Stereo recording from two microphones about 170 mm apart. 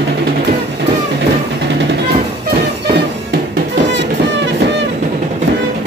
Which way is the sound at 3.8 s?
90° right.